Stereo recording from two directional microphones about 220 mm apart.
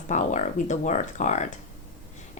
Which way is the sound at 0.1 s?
35° left (ahead or behind).